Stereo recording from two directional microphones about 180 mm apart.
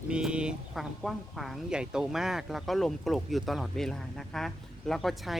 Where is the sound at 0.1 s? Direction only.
5° right (ahead or behind).